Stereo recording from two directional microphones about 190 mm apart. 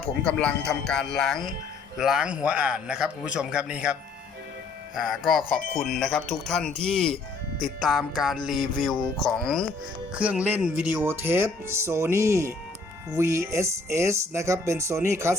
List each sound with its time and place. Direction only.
0.0 s speech: 5° left (ahead or behind)
4.9 s speech: centre (ahead or behind)